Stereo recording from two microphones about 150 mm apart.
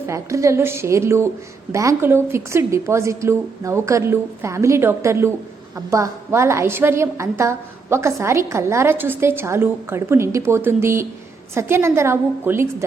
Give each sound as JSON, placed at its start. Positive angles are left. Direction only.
{"t": 0.1, "sound": "a woman's voice", "side_deg": -20}